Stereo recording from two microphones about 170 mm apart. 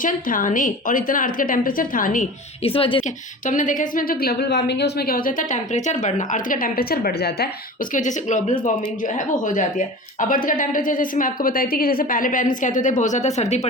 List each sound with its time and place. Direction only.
0.0 s a woman's voice: 50° left (ahead or behind)
2.6 s speech: 35° left (ahead or behind)
3.4 s a woman's voice: 50° left (ahead or behind); by 7.5 s 70° left (ahead or behind)
7.9 s a woman's voice: 45° left (ahead or behind)